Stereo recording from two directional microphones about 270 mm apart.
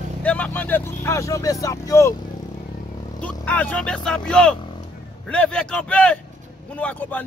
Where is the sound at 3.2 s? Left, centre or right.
Centre.